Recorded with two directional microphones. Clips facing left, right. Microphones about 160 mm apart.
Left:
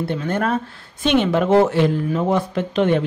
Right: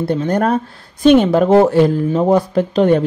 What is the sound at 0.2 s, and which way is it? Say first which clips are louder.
Speech: right 5 dB; 40° right (ahead or behind).